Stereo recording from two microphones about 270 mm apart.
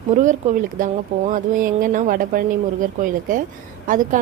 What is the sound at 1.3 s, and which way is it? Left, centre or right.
A woman's voice, right.